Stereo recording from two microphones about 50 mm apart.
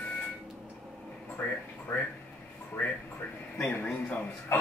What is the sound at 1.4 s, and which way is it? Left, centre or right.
Speech, left.